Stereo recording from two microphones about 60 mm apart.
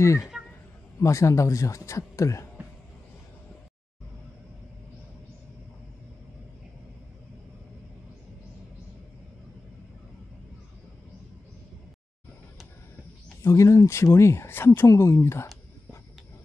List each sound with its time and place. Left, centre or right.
0.0 s speech: left
13.4 s speech: left
14.9 s a sound: left